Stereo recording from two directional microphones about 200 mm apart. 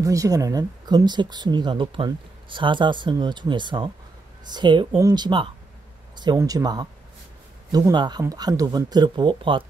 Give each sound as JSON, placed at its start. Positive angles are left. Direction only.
{"t": 0.0, "sound": "speech", "side_deg": -15}